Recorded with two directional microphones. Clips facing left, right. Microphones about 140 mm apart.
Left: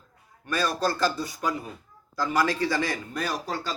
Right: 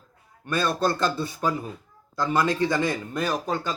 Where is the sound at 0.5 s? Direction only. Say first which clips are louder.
Right 2 dB; 25° right (ahead or behind).